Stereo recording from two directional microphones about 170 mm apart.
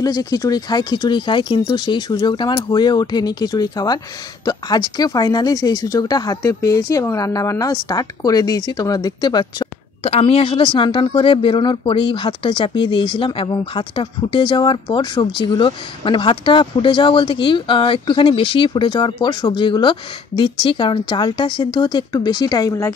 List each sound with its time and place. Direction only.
0.0 s speech: 25° left (ahead or behind)